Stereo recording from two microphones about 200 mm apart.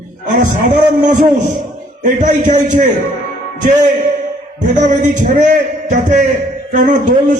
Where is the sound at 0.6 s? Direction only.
40° right (ahead or behind).